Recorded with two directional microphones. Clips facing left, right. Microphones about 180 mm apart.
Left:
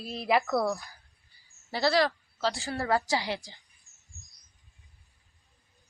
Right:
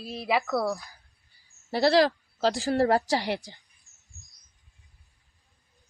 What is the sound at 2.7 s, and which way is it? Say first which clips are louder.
Speech: right 9 dB; 40° right (ahead or behind).